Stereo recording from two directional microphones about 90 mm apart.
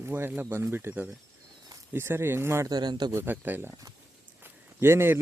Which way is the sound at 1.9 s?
25° right (ahead or behind).